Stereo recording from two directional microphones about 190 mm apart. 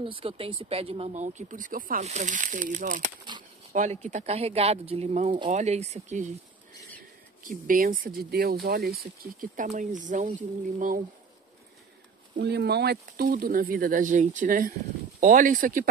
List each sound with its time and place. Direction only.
0.0 s speech: 30° right (ahead or behind)
7.4 s speech: 50° right (ahead or behind)
12.4 s speech: 60° right (ahead or behind); by 15.9 s 45° right (ahead or behind)